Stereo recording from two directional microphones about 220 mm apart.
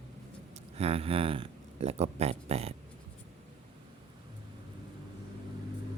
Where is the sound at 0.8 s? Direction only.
25° right (ahead or behind).